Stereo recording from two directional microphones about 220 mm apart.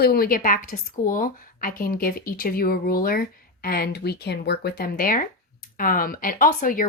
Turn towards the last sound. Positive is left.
turn(degrees=40)  # may be behind; listen again after turning